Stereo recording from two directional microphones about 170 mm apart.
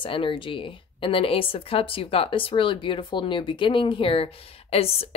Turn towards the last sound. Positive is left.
turn(degrees=35)  # may be behind; listen again after turning